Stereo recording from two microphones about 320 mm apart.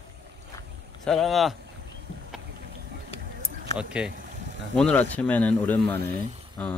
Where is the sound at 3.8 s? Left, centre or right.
Centre.